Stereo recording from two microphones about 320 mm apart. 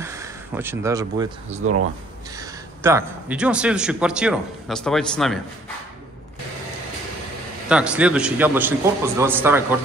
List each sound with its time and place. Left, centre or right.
0.0 s speech: centre
1.6 s speech: right
2.3 s a man's voice: centre
7.6 s a man's voice: centre